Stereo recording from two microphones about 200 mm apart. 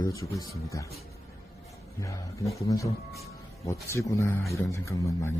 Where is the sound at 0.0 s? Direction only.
15° left (ahead or behind).